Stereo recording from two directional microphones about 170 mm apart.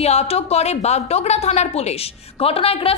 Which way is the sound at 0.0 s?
40° left (ahead or behind).